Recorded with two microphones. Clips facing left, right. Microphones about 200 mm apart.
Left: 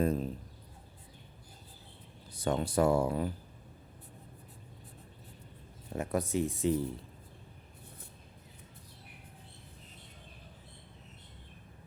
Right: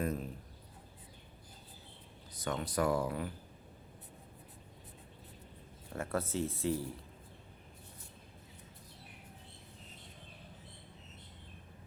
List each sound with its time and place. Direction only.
0.0 s speech: 30° left (ahead or behind)
2.3 s speech: 30° left (ahead or behind)
5.9 s speech: 15° left (ahead or behind)